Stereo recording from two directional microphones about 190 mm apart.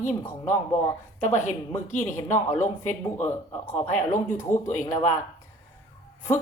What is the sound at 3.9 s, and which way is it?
Speech, 40° left (ahead or behind).